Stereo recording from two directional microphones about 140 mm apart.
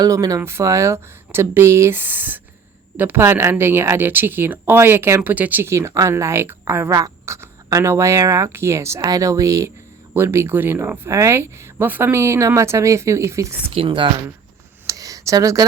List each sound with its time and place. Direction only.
0.0 s speech: 25° right (ahead or behind)
13.7 s speech: 35° right (ahead or behind)
14.8 s a sound: 25° right (ahead or behind)